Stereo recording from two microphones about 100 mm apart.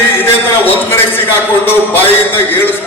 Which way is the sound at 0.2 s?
20° left (ahead or behind).